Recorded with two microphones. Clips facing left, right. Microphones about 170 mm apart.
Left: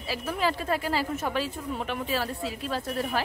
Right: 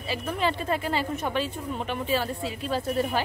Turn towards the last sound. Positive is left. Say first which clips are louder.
# right 3 dB
turn(degrees=0)  # may be behind; listen again after turning